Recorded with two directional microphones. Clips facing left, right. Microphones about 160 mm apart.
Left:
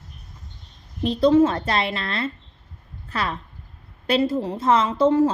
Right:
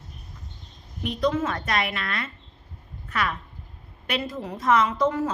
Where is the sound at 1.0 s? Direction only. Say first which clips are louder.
Left 8 dB; 30° left (ahead or behind).